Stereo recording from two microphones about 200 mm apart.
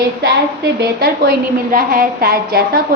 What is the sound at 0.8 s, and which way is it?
A woman's voice, 50° right (ahead or behind).